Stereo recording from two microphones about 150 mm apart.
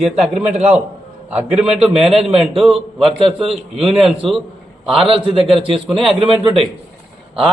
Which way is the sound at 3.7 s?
Centre (ahead or behind).